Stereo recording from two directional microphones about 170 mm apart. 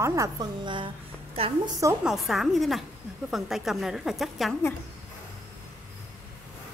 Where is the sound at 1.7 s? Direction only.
20° right (ahead or behind).